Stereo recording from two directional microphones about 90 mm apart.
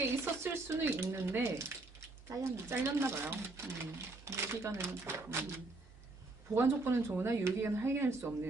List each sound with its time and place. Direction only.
0.0 s speech: 30° right (ahead or behind)
6.5 s speech: 25° right (ahead or behind)